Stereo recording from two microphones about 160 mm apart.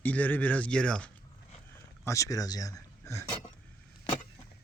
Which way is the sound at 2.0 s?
20° left (ahead or behind).